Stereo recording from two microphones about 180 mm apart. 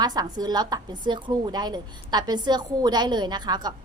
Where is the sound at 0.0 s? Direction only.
20° right (ahead or behind).